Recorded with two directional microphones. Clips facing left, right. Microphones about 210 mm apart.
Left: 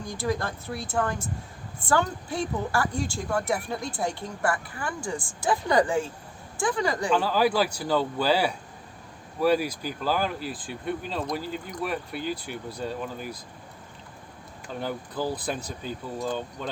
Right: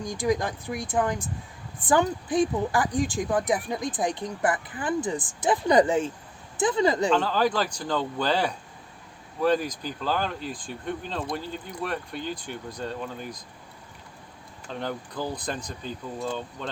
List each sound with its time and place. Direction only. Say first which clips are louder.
0.0 s speech: right 3 dB; 15° right (ahead or behind)
7.1 s speech: even; 10° left (ahead or behind)
14.7 s speech: even; 5° left (ahead or behind)